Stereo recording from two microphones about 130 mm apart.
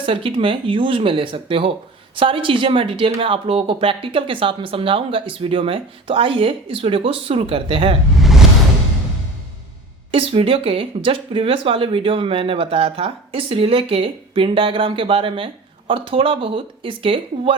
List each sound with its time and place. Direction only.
0.0 s speech: 40° right (ahead or behind)
8.2 s music: centre (ahead or behind)
10.1 s speech: 45° right (ahead or behind)